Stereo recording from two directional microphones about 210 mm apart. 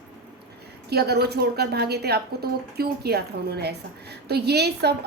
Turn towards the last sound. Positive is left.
turn(degrees=-50)  # may be behind; listen again after turning